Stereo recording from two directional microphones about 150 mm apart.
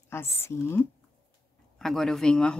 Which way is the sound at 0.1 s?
15° left (ahead or behind).